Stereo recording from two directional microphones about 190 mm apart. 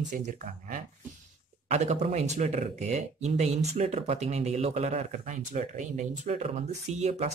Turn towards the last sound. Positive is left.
turn(degrees=-35)  # may be behind; listen again after turning